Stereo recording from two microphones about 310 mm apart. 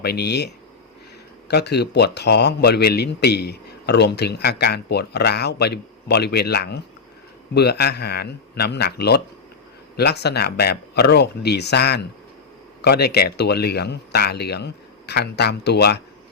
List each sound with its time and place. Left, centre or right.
0.0 s a man's voice: left